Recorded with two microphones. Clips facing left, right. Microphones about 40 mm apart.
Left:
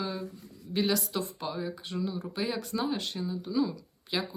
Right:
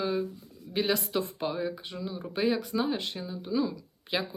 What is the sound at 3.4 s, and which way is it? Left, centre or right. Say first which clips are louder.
Speech: right 1 dB; right.